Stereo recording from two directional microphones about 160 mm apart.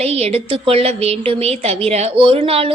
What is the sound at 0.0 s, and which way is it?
A woman's voice, 40° right (ahead or behind).